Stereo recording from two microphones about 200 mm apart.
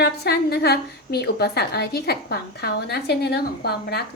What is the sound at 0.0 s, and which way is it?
A woman's voice, 55° left (ahead or behind).